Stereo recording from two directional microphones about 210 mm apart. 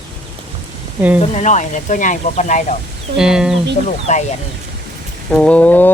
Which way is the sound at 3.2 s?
5° right (ahead or behind).